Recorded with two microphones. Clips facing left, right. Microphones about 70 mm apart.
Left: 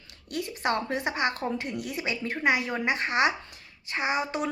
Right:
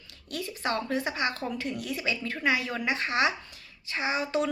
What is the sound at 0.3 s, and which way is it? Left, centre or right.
Speech, left.